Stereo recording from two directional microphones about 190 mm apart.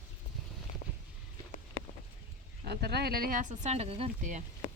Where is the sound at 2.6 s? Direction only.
60° right (ahead or behind); by 4.4 s 35° right (ahead or behind).